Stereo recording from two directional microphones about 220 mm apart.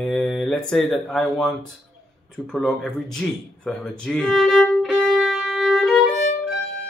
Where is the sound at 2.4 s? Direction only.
5° left (ahead or behind).